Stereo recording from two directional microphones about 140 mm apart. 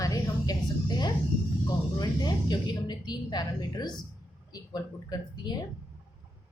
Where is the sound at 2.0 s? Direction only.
30° left (ahead or behind).